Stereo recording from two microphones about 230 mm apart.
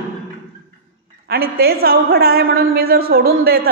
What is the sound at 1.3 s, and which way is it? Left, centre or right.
A woman's voice, right.